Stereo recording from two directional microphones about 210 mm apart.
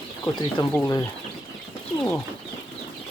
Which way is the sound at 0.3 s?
10° left (ahead or behind).